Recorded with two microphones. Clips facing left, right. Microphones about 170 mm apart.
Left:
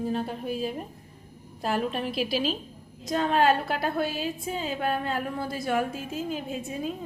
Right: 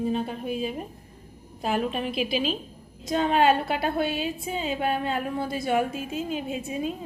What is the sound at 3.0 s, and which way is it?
A woman's voice, centre (ahead or behind).